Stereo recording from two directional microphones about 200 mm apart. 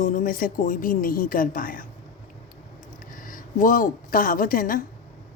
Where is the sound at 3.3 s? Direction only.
40° left (ahead or behind).